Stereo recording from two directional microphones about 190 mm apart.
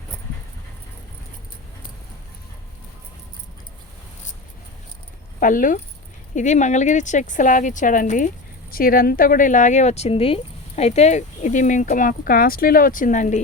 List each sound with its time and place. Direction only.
5.4 s speech: 45° left (ahead or behind)